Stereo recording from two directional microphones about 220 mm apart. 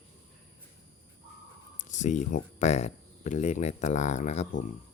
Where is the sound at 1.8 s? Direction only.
35° left (ahead or behind).